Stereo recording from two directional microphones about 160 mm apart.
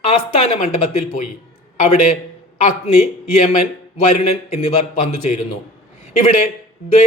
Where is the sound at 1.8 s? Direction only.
50° left (ahead or behind).